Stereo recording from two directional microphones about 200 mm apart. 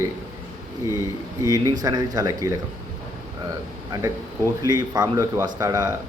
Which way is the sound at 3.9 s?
15° right (ahead or behind).